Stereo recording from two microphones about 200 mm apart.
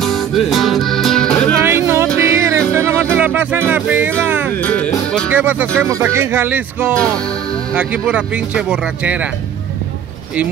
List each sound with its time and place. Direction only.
0.0 s music: centre (ahead or behind)
1.6 s music: 15° right (ahead or behind)
4.5 s music: 5° left (ahead or behind)
5.3 s speech: 10° right (ahead or behind)
7.0 s speech: 5° left (ahead or behind)
7.7 s speech: 5° right (ahead or behind)